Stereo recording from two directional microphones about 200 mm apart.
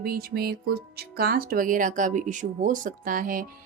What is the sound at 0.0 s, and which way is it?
Speech, 50° right (ahead or behind).